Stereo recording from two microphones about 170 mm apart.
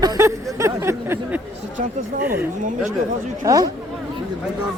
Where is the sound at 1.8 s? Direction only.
50° right (ahead or behind).